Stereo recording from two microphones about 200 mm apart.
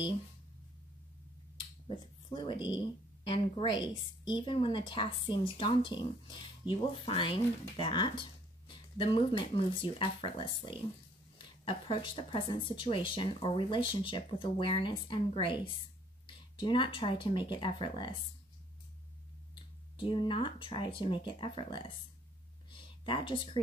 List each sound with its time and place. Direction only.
1.9 s speech: 25° left (ahead or behind)
20.0 s speech: 25° left (ahead or behind)
22.7 s a sound: 25° left (ahead or behind)